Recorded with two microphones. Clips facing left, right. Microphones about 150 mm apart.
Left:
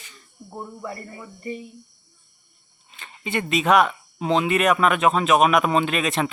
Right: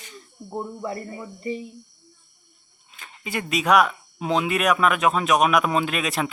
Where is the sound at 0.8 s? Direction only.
15° right (ahead or behind).